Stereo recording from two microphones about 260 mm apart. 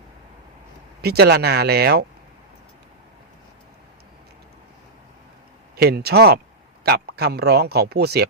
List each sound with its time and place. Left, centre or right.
1.0 s a man's voice: right
5.7 s a man's voice: right